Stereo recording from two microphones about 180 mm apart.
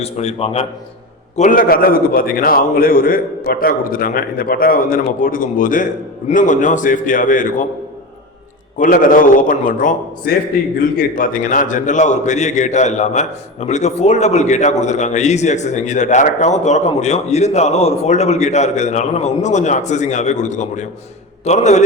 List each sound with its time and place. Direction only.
0.0 s a man's voice: 35° left (ahead or behind)
1.4 s a man's voice: 50° left (ahead or behind)
8.8 s a man's voice: 50° left (ahead or behind)